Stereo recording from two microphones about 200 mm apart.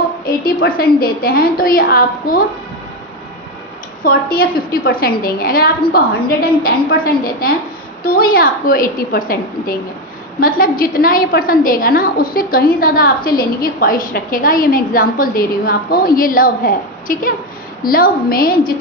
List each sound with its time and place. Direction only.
0.5 s a woman's voice: 50° left (ahead or behind)
4.0 s a woman's voice: 45° left (ahead or behind)